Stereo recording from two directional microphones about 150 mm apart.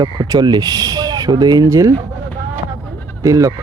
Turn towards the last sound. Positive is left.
turn(degrees=-20)  # may be behind; listen again after turning